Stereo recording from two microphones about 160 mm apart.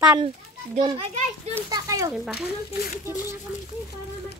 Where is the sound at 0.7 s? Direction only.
30° right (ahead or behind).